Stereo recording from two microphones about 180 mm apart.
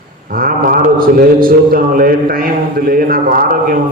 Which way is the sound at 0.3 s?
50° right (ahead or behind).